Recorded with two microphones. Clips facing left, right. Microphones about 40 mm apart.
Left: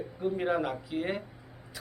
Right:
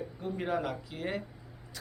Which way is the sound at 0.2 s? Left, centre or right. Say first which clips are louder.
Left 4 dB; centre.